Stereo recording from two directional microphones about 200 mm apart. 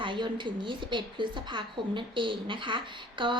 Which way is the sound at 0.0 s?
25° right (ahead or behind).